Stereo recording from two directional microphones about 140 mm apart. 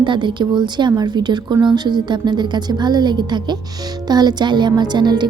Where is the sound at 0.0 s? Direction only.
35° right (ahead or behind).